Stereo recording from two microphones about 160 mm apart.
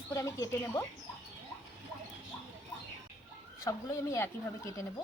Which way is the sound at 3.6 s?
20° left (ahead or behind).